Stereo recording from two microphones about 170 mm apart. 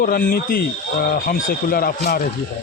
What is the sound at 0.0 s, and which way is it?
A man's voice, 55° left (ahead or behind).